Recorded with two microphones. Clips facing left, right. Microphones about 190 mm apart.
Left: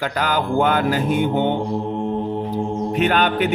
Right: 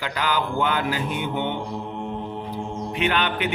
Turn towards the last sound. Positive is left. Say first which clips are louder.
# left 5 dB
turn(degrees=45)  # may be behind; listen again after turning